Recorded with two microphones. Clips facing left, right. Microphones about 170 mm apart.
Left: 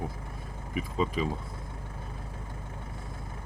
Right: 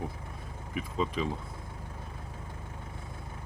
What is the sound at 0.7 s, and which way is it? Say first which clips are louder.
Speech: left 2 dB; centre (ahead or behind).